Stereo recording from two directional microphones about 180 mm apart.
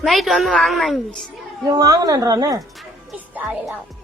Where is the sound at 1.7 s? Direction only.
20° right (ahead or behind).